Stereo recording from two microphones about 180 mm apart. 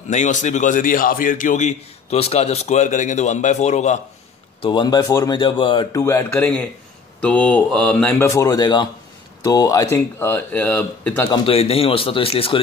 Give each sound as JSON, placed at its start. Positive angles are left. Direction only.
{"t": 0.1, "sound": "a man's voice", "side_deg": 40}
{"t": 4.6, "sound": "speech", "side_deg": 25}
{"t": 5.9, "sound": "speech", "side_deg": 15}
{"t": 11.2, "sound": "a man's voice", "side_deg": 30}